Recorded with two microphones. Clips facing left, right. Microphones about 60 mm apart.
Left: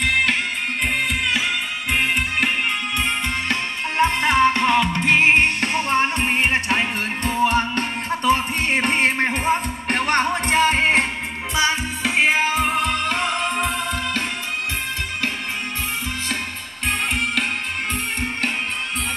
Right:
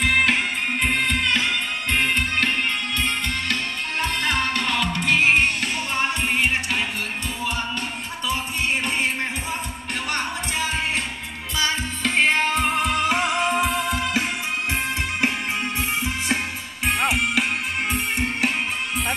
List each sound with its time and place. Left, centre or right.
0.0 s music: centre
4.0 s music: left
11.5 s music: centre
16.8 s music: centre